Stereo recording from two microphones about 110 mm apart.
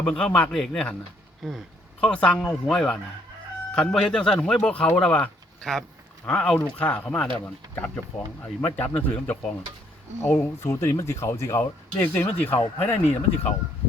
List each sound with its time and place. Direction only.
0.0 s speech: 10° left (ahead or behind)